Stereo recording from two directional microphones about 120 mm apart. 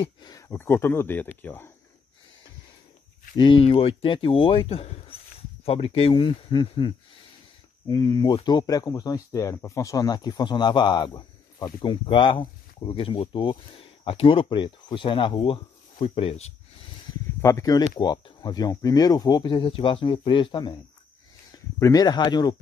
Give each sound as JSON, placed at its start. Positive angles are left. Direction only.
{"t": 0.5, "sound": "speech", "side_deg": 20}
{"t": 3.3, "sound": "speech", "side_deg": 45}
{"t": 7.9, "sound": "speech", "side_deg": 35}
{"t": 17.4, "sound": "speech", "side_deg": 25}
{"t": 21.5, "sound": "speech", "side_deg": 25}